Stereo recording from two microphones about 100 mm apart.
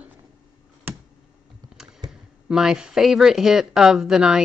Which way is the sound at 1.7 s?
10° right (ahead or behind).